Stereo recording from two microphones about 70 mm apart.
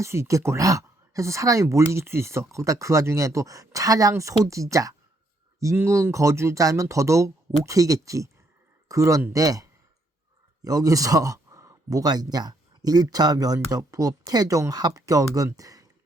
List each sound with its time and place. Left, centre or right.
0.0 s speech: right
5.7 s speech: right
15.5 s a sound: right